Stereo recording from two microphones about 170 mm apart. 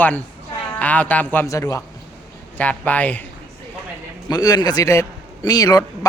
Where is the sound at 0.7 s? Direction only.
10° left (ahead or behind).